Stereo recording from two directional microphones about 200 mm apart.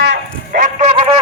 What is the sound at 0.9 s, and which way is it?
Music, 30° right (ahead or behind).